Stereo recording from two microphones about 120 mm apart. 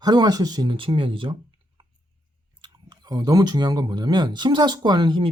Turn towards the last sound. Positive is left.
turn(degrees=-40)  # may be behind; listen again after turning